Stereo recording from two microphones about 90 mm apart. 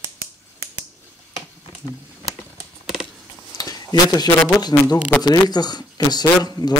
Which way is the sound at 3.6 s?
45° left (ahead or behind).